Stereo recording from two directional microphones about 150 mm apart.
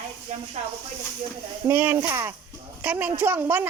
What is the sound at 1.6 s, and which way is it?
Speech, 15° right (ahead or behind).